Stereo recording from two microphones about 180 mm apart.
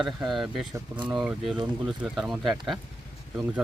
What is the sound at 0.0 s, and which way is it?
Speech, centre (ahead or behind).